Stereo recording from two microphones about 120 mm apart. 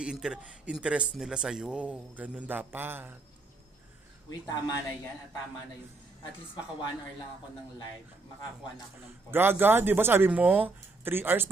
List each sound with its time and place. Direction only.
0.0 s speech: 5° right (ahead or behind)
4.3 s speech: 30° left (ahead or behind)
9.3 s speech: 15° right (ahead or behind)